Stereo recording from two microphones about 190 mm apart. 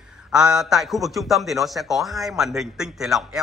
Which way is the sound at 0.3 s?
5° right (ahead or behind).